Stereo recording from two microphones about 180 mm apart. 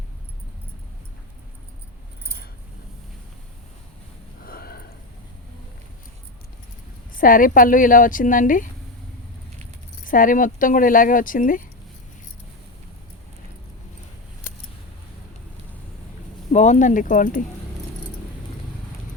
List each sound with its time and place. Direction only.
4.4 s a sound: 55° left (ahead or behind)
7.1 s speech: 50° left (ahead or behind)
10.0 s speech: 50° left (ahead or behind)
16.5 s speech: 40° left (ahead or behind)